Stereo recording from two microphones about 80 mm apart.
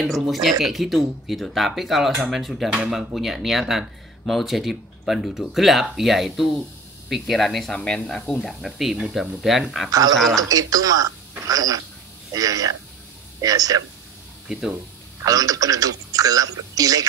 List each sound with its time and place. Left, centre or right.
0.0 s speech: centre
2.7 s speech: centre
9.8 s a man's voice: right
15.2 s a man's voice: right